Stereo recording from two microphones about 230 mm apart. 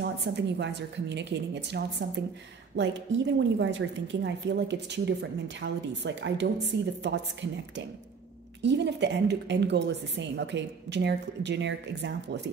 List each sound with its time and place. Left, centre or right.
0.0 s a woman's voice: right
8.6 s a woman's voice: right